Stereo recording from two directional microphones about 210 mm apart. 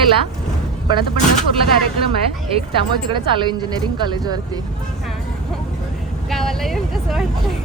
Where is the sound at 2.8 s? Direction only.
25° right (ahead or behind).